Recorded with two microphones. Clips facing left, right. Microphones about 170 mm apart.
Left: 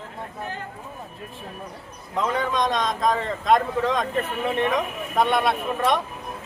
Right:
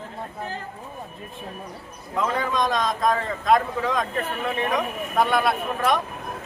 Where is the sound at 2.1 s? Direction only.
Centre (ahead or behind).